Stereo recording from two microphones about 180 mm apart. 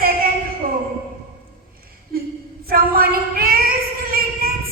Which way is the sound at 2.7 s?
55° right (ahead or behind).